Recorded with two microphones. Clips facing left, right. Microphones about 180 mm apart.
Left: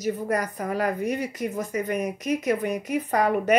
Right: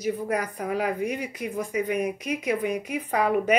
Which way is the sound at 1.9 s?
45° left (ahead or behind).